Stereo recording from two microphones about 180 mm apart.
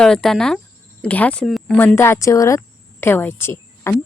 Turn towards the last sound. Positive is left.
turn(degrees=15)  # may be behind; listen again after turning